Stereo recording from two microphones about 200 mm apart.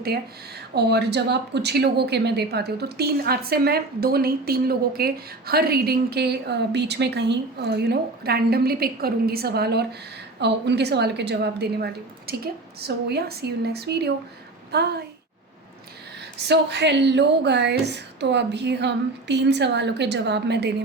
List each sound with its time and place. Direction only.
0.8 s a woman's voice: 55° right (ahead or behind)
16.4 s a woman's voice: 55° right (ahead or behind)